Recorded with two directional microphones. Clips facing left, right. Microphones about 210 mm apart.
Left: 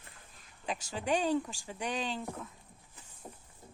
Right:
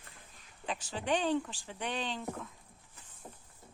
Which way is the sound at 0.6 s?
10° left (ahead or behind).